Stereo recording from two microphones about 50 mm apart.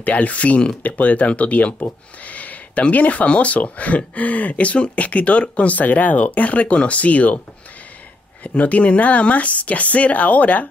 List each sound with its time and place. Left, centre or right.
0.0 s speech: left
8.5 s speech: left